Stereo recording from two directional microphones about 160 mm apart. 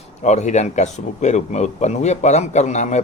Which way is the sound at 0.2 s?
45° left (ahead or behind).